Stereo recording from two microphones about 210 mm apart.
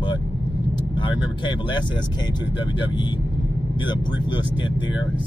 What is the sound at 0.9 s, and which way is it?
Speech, 20° left (ahead or behind).